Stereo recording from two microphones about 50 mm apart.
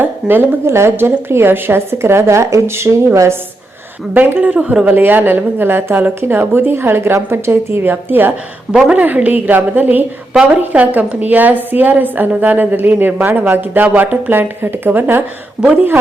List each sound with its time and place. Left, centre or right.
0.0 s a woman's voice: right
0.6 s a woman's voice: right
4.1 s a woman's voice: right
4.4 s speech: right
4.9 s a woman's voice: right
6.2 s a woman's voice: right
9.0 s a woman's voice: right
15.6 s a woman's voice: centre